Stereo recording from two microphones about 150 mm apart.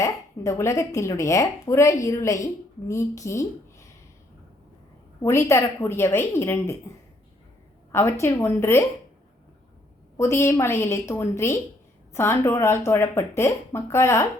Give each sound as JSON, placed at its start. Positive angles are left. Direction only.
{"t": 0.0, "sound": "speech", "side_deg": 20}
{"t": 5.2, "sound": "speech", "side_deg": 20}
{"t": 7.9, "sound": "speech", "side_deg": 20}
{"t": 10.2, "sound": "speech", "side_deg": 15}